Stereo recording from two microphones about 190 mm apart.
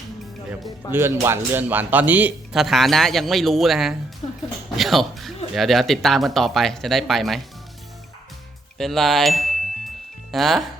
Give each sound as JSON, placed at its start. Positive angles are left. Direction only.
{"t": 0.9, "sound": "speech", "side_deg": -10}
{"t": 4.2, "sound": "a woman's voice", "side_deg": 35}
{"t": 4.8, "sound": "speech", "side_deg": 0}
{"t": 8.8, "sound": "speech", "side_deg": 0}